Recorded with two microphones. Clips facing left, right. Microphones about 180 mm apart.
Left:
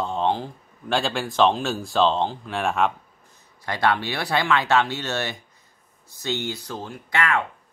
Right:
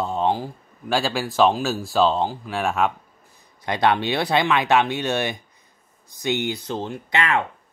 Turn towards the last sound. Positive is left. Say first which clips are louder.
# right 2 dB
turn(degrees=-20)  # may be behind; listen again after turning